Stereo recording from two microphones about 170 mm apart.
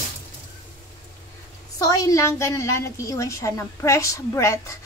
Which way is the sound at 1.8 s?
20° left (ahead or behind).